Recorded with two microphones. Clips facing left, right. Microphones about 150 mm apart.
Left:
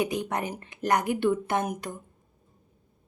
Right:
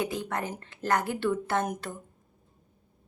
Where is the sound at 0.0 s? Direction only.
20° left (ahead or behind).